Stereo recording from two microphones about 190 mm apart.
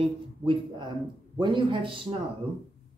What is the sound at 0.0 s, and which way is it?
Speech, 25° right (ahead or behind).